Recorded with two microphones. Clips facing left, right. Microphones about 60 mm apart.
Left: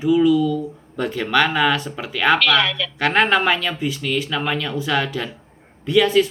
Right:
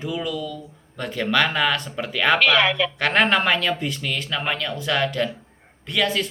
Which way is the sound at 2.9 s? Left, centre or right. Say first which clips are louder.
Left 5 dB; centre.